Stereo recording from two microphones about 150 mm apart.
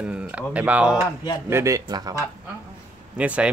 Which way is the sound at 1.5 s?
20° right (ahead or behind).